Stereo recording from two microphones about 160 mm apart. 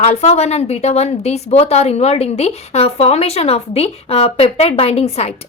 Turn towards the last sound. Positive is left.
turn(degrees=40)  # may be behind; listen again after turning